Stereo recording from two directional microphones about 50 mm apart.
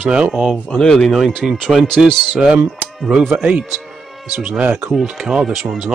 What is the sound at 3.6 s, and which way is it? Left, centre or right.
Speech, centre.